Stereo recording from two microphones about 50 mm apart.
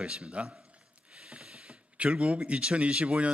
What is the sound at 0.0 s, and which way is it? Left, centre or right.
A man's voice, right.